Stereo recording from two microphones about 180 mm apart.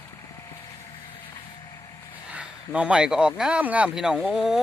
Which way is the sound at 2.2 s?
5° right (ahead or behind).